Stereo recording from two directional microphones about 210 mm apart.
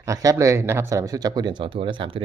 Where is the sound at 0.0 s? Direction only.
15° right (ahead or behind).